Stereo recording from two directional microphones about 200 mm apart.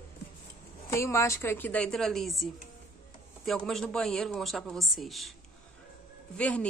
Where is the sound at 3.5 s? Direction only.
Centre (ahead or behind).